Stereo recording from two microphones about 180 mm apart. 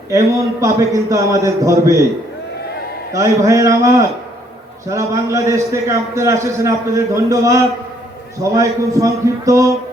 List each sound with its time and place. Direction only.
0.6 s a man's voice: 15° right (ahead or behind)
3.1 s a man's voice: 15° right (ahead or behind)